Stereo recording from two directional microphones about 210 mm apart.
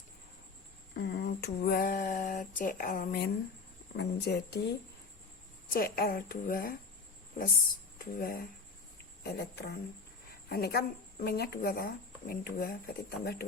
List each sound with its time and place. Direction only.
0.9 s speech: 50° left (ahead or behind)
5.7 s speech: 45° left (ahead or behind)
7.9 s speech: 40° left (ahead or behind)